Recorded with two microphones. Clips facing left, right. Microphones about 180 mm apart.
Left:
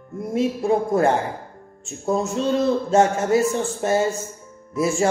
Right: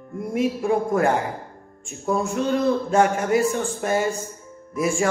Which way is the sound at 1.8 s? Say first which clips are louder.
Left 1 dB; 20° left (ahead or behind).